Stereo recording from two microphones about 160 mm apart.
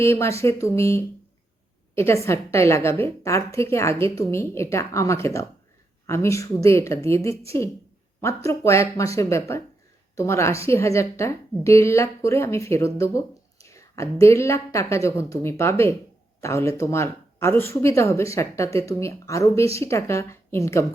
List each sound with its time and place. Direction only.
0.0 s a woman's voice: 15° left (ahead or behind)